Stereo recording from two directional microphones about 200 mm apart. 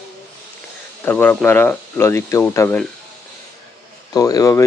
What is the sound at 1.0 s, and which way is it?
Speech, 10° left (ahead or behind).